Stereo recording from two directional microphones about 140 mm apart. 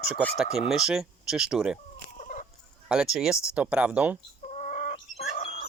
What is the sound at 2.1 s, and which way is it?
Fowl, 60° left (ahead or behind).